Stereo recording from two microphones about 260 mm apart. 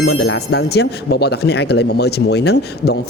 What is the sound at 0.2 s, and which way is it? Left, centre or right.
Speech, left.